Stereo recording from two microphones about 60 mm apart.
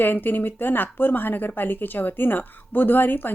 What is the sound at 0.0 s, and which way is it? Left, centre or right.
Speech, left.